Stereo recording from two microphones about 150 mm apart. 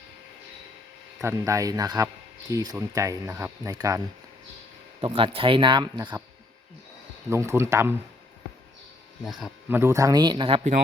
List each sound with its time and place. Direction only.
1.2 s speech: 20° right (ahead or behind)
4.9 s speech: 35° right (ahead or behind)
7.3 s speech: 20° right (ahead or behind)
9.2 s speech: centre (ahead or behind)
9.6 s speech: 15° right (ahead or behind); by 10.6 s 35° right (ahead or behind)